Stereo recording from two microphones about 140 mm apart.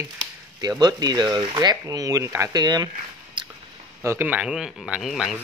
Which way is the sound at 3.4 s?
35° right (ahead or behind).